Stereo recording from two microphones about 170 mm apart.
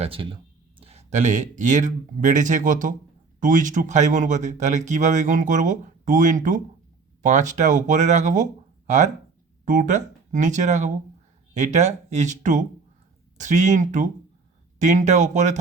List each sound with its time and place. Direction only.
0.0 s speech: 30° right (ahead or behind)
9.6 s speech: 50° right (ahead or behind)